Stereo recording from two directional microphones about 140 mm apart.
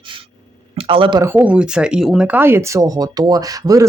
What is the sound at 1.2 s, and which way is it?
Speech, 15° right (ahead or behind).